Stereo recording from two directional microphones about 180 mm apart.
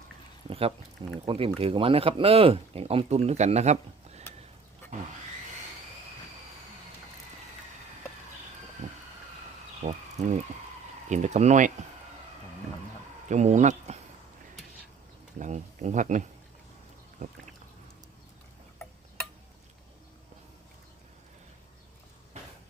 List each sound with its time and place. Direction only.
0.4 s speech: 35° right (ahead or behind)
8.8 s vehicle: 40° right (ahead or behind)
9.8 s speech: 40° right (ahead or behind)
13.2 s speech: 40° right (ahead or behind)
15.4 s speech: 40° right (ahead or behind)